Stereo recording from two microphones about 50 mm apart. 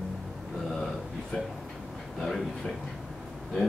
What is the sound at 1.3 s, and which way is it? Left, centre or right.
Speech, left.